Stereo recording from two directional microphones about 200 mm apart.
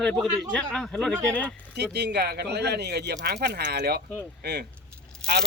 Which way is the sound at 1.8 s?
55° right (ahead or behind).